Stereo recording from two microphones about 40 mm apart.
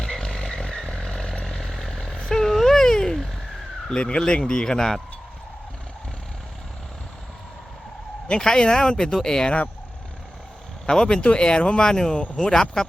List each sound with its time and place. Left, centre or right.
0.0 s a sound: centre
0.9 s vehicle: centre
1.7 s vehicle: centre
4.2 s speech: left
8.4 s speech: centre
10.8 s speech: centre
11.9 s speech: centre